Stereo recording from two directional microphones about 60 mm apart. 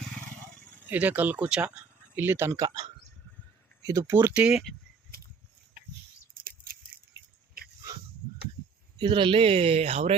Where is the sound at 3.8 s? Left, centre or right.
Right.